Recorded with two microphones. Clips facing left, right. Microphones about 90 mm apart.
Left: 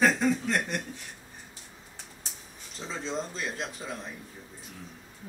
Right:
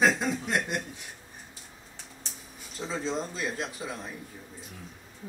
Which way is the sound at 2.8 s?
5° right (ahead or behind).